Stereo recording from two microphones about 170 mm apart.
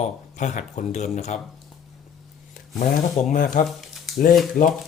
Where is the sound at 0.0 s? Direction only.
45° left (ahead or behind).